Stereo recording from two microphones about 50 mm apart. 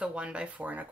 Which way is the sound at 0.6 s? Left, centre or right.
Right.